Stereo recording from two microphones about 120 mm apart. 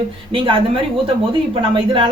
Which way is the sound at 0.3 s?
45° right (ahead or behind).